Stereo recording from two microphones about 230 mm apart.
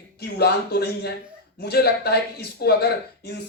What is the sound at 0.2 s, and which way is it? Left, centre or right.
Speech, left.